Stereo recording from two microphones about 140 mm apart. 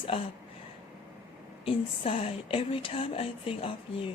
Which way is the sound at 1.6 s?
40° left (ahead or behind).